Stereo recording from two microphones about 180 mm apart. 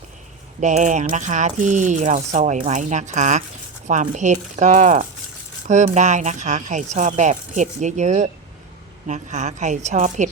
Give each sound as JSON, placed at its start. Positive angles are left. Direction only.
{"t": 0.6, "sound": "speech", "side_deg": -40}